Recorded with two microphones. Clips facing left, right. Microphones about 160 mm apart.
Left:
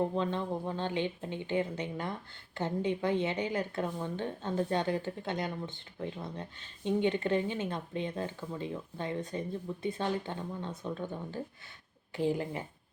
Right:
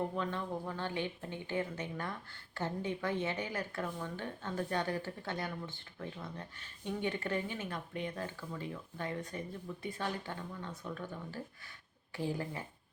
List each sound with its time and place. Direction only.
0.0 s speech: 20° left (ahead or behind)